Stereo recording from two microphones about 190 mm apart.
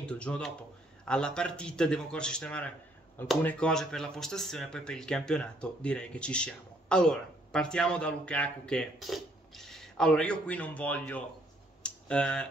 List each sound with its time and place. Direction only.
0.0 s speech: 5° left (ahead or behind)
11.8 s clicking: 5° left (ahead or behind)